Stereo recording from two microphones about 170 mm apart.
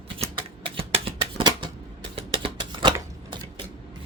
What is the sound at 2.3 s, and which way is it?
Typewriter, 30° right (ahead or behind).